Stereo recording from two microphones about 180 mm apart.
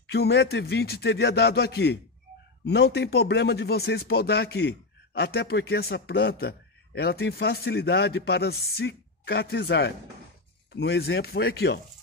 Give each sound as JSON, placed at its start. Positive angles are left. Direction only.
{"t": 0.0, "sound": "speech", "side_deg": 65}